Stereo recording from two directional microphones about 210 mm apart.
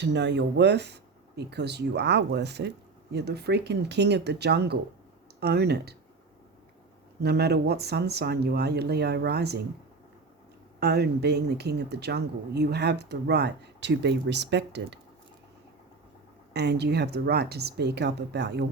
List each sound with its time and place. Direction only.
0.0 s speech: 55° right (ahead or behind)
7.2 s speech: 50° right (ahead or behind)
10.8 s speech: 50° right (ahead or behind)
16.5 s speech: 50° right (ahead or behind)